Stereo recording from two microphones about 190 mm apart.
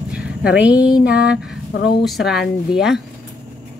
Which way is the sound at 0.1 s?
5° right (ahead or behind).